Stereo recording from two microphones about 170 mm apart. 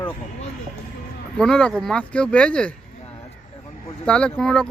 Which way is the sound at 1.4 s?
5° left (ahead or behind).